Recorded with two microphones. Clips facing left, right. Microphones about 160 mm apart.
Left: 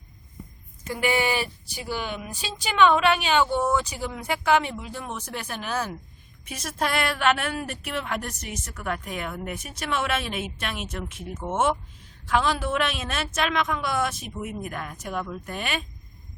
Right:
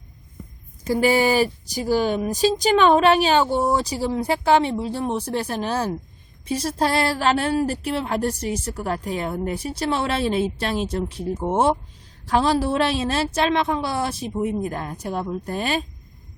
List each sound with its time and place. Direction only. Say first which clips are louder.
0.9 s a woman's voice: right 6 dB; 35° right (ahead or behind)